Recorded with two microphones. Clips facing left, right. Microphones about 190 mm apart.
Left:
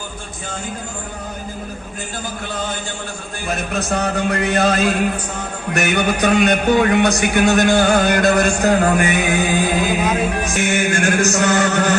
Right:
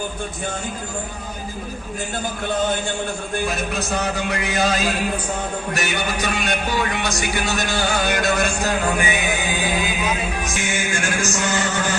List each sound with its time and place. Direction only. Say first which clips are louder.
3.8 s a man's voice: left 4 dB; 60° left (ahead or behind)